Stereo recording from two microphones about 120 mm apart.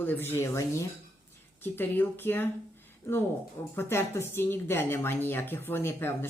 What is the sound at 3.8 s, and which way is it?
A woman's voice, 20° left (ahead or behind).